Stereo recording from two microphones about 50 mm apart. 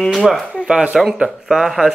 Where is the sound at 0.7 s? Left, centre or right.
Centre.